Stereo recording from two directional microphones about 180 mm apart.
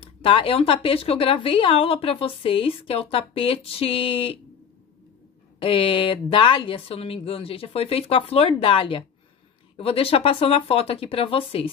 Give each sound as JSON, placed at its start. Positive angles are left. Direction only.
{"t": 0.0, "sound": "speech", "side_deg": 30}
{"t": 5.6, "sound": "speech", "side_deg": 30}